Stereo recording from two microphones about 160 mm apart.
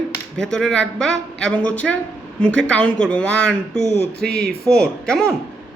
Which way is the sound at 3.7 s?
45° left (ahead or behind).